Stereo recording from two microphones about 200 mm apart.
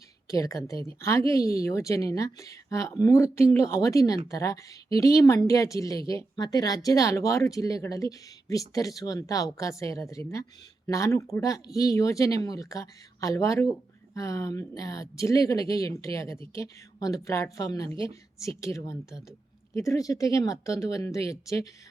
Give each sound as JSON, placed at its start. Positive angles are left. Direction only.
{"t": 0.3, "sound": "a woman's voice", "side_deg": 15}